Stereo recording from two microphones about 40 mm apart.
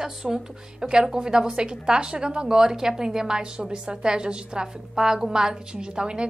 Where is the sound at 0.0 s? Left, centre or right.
Centre.